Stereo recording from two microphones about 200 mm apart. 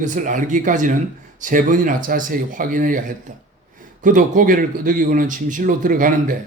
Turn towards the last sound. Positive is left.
turn(degrees=-45)  # may be behind; listen again after turning